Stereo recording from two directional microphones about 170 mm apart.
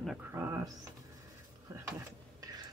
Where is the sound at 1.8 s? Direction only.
20° right (ahead or behind).